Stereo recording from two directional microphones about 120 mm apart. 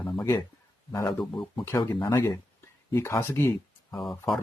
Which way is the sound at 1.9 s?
25° left (ahead or behind).